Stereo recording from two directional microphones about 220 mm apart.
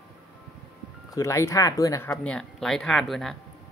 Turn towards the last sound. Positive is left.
turn(degrees=0)  # may be behind; listen again after turning